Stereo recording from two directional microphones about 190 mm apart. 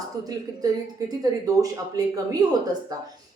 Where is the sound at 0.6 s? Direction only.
20° right (ahead or behind).